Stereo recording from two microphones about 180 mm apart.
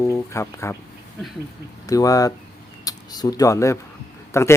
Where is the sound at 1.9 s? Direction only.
20° left (ahead or behind).